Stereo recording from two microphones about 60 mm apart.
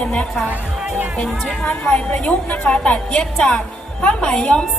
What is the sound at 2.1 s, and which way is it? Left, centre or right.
Speech, centre.